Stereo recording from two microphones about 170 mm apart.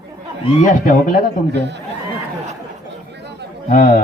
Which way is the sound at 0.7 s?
50° left (ahead or behind).